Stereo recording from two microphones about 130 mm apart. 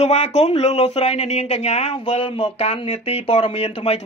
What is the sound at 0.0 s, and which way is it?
Speech, 65° left (ahead or behind).